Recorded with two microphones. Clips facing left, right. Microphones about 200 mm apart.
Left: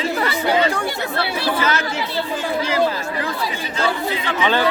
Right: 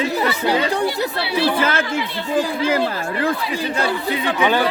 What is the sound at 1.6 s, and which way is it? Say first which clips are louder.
Speech: right 2 dB; 50° right (ahead or behind).